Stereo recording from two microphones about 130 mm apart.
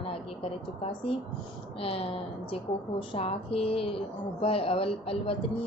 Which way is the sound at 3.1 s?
45° left (ahead or behind).